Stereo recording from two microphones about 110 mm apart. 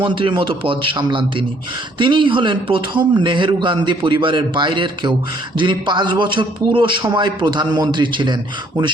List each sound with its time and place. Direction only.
0.0 s a man's voice: 50° right (ahead or behind)